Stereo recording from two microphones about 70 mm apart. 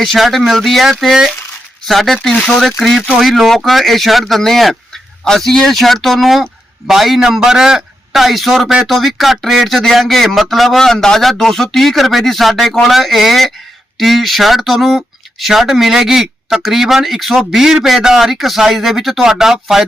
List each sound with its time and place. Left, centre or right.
0.0 s speech: centre